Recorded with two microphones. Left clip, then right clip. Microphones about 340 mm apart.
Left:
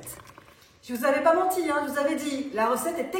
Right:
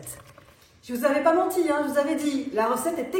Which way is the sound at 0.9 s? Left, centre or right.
Centre.